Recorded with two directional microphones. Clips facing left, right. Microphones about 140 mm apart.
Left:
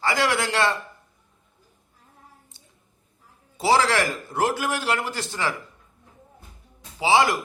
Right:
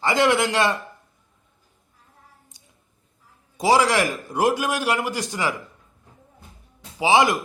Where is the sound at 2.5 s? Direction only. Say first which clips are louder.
Left 1 dB; 15° right (ahead or behind).